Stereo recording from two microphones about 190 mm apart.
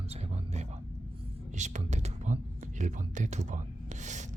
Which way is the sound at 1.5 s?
40° right (ahead or behind).